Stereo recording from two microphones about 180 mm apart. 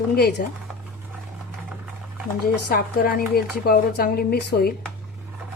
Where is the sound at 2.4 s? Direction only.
55° left (ahead or behind).